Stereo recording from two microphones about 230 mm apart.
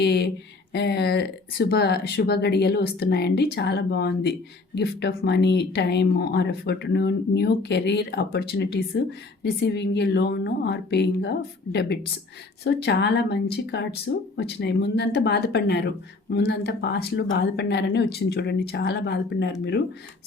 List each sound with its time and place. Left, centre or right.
0.0 s speech: left